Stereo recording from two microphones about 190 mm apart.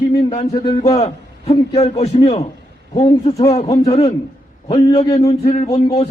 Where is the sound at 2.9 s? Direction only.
20° left (ahead or behind).